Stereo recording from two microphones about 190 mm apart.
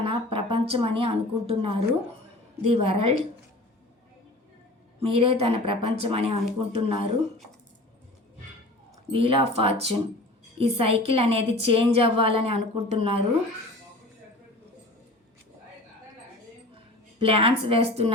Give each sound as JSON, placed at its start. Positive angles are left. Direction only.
{"t": 0.0, "sound": "a woman's voice", "side_deg": -30}
{"t": 5.0, "sound": "a woman's voice", "side_deg": -30}
{"t": 9.1, "sound": "a woman's voice", "side_deg": -30}
{"t": 17.2, "sound": "a woman's voice", "side_deg": -30}